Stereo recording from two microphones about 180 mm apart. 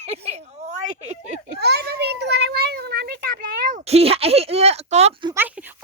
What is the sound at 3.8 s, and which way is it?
Speech, 35° right (ahead or behind).